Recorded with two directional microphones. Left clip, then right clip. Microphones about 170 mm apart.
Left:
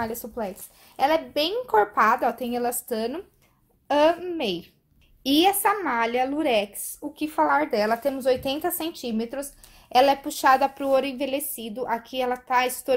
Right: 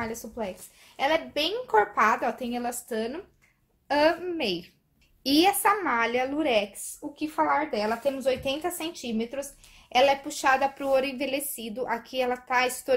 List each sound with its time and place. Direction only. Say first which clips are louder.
0.0 s a woman's voice: left 3 dB; 40° left (ahead or behind)
3.8 s a woman's voice: left 3 dB; 30° left (ahead or behind)